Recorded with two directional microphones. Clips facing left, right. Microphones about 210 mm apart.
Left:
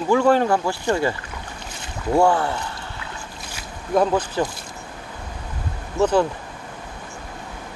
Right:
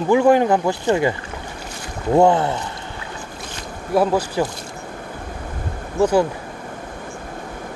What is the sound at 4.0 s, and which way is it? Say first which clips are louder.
Speech: right 1 dB; 10° right (ahead or behind).